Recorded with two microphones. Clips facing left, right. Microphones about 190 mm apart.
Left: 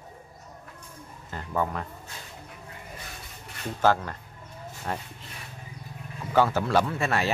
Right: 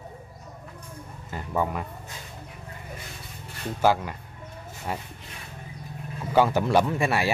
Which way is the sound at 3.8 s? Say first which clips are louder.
Right 1 dB; 10° right (ahead or behind).